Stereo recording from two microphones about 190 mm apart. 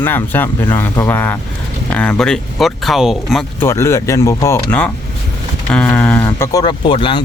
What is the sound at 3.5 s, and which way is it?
Speech, 15° left (ahead or behind).